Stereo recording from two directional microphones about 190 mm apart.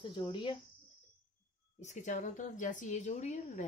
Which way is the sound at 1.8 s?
40° left (ahead or behind).